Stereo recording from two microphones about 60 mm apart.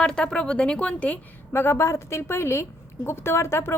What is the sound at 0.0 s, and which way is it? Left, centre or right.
A woman's voice, centre.